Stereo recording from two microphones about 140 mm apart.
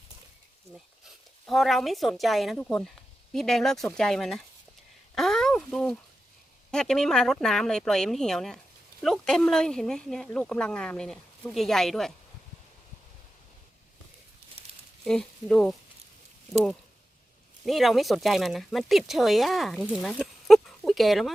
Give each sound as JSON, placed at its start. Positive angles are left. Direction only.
{"t": 1.0, "sound": "speech", "side_deg": 0}
{"t": 5.1, "sound": "a sound", "side_deg": 5}
{"t": 6.7, "sound": "speech", "side_deg": 5}
{"t": 14.6, "sound": "crumpling", "side_deg": -45}
{"t": 15.0, "sound": "speech", "side_deg": 5}
{"t": 17.7, "sound": "speech", "side_deg": 0}